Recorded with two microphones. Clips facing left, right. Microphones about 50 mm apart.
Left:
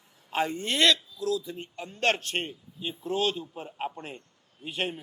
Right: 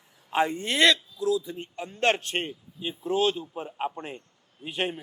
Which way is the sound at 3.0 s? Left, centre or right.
Right.